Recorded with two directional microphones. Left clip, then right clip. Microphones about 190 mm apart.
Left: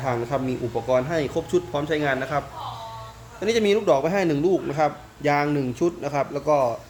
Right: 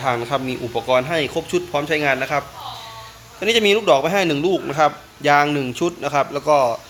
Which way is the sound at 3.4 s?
15° right (ahead or behind).